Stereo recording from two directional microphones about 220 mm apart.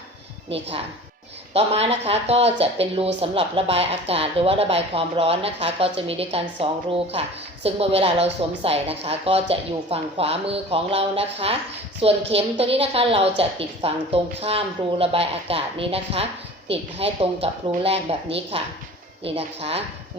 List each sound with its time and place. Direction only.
1.5 s a woman's voice: 25° right (ahead or behind)